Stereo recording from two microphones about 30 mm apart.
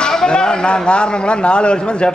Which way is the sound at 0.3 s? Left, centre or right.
Left.